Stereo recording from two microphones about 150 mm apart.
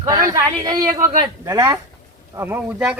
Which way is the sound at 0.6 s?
25° right (ahead or behind).